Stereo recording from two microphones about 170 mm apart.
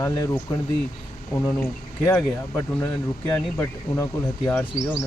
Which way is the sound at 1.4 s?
5° left (ahead or behind).